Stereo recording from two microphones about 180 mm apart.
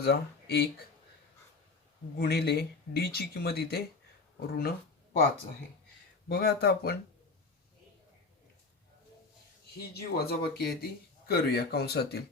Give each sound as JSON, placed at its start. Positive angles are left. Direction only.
{"t": 0.0, "sound": "speech", "side_deg": 65}
{"t": 2.1, "sound": "speech", "side_deg": 65}
{"t": 6.2, "sound": "speech", "side_deg": 60}
{"t": 9.9, "sound": "speech", "side_deg": 60}